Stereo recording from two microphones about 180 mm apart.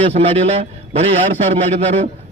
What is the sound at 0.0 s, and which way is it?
A man's voice, 35° right (ahead or behind).